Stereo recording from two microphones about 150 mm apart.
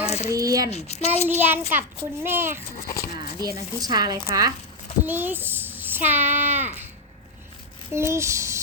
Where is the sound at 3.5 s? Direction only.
25° right (ahead or behind).